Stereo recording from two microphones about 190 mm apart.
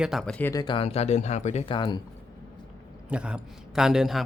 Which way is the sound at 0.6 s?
25° left (ahead or behind).